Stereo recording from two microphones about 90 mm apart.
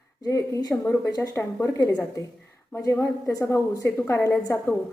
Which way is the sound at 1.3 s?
30° left (ahead or behind).